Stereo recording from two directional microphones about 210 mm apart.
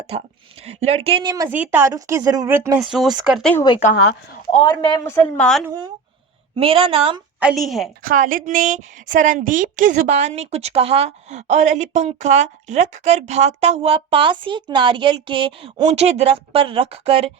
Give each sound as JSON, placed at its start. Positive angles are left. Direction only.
{"t": 0.6, "sound": "a woman's voice", "side_deg": -30}
{"t": 2.8, "sound": "speech", "side_deg": 0}
{"t": 3.5, "sound": "speech", "side_deg": 20}
{"t": 6.6, "sound": "a woman's voice", "side_deg": -25}
{"t": 7.3, "sound": "speech", "side_deg": -5}
{"t": 8.0, "sound": "a woman's voice", "side_deg": -40}